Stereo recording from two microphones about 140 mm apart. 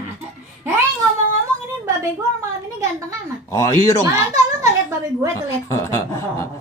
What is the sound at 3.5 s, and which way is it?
Speech, 25° left (ahead or behind).